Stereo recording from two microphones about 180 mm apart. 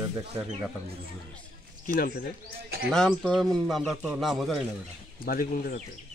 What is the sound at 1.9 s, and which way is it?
Speech, 55° left (ahead or behind).